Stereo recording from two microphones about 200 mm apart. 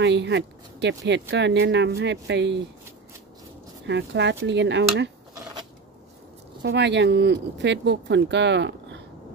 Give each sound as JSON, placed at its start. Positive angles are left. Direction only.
{"t": 0.0, "sound": "speech", "side_deg": -60}
{"t": 3.8, "sound": "speech", "side_deg": -60}
{"t": 6.6, "sound": "speech", "side_deg": -60}